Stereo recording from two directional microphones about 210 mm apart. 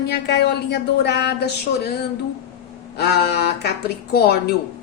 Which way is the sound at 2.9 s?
50° left (ahead or behind).